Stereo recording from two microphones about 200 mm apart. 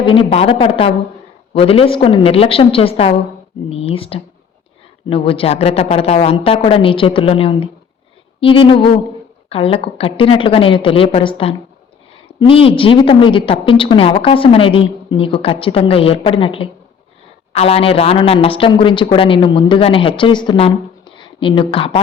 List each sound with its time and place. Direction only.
0.0 s a woman's voice: 25° left (ahead or behind)